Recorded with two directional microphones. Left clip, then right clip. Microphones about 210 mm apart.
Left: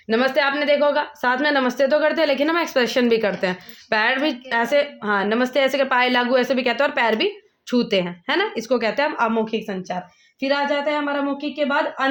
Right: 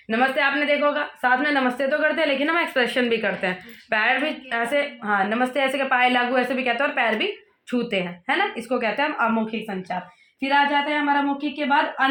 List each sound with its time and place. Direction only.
0.1 s a woman's voice: 55° left (ahead or behind)